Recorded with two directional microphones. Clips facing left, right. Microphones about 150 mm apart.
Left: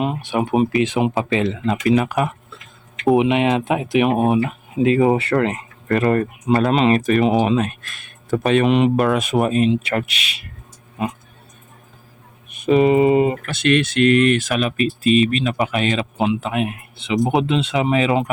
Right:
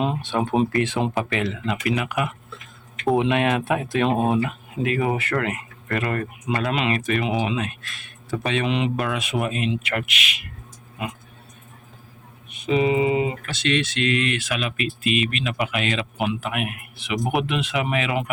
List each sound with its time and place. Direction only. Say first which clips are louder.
0.0 s speech: left 2 dB; 10° left (ahead or behind)
0.7 s speech: left 4 dB; 20° left (ahead or behind); by 2.3 s 35° left (ahead or behind)
3.2 s speech: left 2 dB; 20° left (ahead or behind)
12.5 s speech: left 6 dB; 50° left (ahead or behind); by 18.3 s 30° left (ahead or behind)